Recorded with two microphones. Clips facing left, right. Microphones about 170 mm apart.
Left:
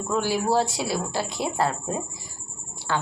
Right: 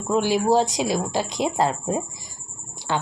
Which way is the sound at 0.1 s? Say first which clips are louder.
Right 4 dB; 15° right (ahead or behind).